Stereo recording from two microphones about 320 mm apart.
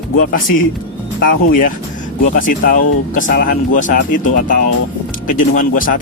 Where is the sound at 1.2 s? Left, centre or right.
Left.